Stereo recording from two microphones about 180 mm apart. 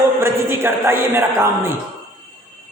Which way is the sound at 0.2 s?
15° right (ahead or behind).